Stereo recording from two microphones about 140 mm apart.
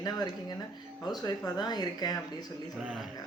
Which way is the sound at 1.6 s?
30° left (ahead or behind).